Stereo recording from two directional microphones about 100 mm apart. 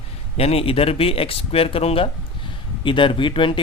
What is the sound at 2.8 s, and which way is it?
Speech, 55° left (ahead or behind).